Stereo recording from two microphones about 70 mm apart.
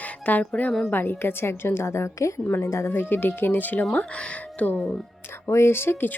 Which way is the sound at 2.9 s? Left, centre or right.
Left.